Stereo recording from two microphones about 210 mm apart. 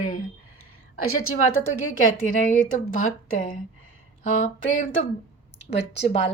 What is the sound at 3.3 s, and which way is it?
Speech, 40° left (ahead or behind).